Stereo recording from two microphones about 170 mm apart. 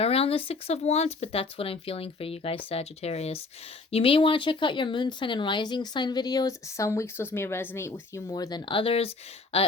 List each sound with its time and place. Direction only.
0.0 s speech: 35° left (ahead or behind)